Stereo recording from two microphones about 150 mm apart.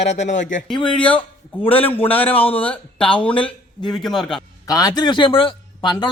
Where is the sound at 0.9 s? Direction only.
35° left (ahead or behind).